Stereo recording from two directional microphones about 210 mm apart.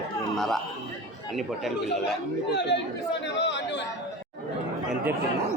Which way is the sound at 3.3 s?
55° left (ahead or behind).